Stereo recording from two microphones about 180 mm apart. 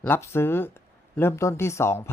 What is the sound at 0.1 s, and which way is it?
Speech, 15° left (ahead or behind).